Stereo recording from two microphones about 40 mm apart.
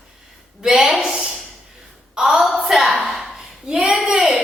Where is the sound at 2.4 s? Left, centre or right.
Centre.